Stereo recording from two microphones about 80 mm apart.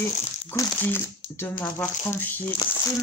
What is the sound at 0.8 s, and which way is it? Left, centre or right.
Speech, left.